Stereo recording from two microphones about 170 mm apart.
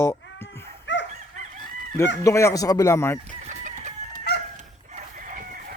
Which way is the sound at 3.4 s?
45° right (ahead or behind).